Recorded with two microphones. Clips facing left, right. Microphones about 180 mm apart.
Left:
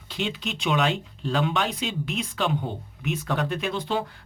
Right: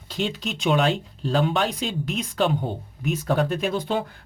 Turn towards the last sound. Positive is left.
turn(degrees=-45)  # may be behind; listen again after turning